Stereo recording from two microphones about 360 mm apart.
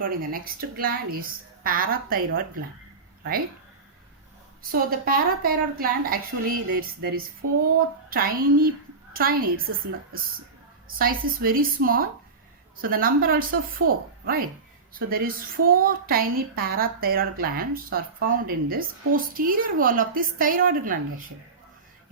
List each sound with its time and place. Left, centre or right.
0.0 s a woman's voice: right
4.7 s a woman's voice: right